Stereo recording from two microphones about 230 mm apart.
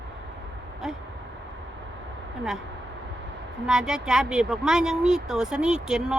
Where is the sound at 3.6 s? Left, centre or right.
Centre.